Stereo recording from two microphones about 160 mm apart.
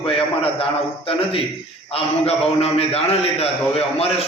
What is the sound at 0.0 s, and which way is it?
A man's voice, 35° left (ahead or behind).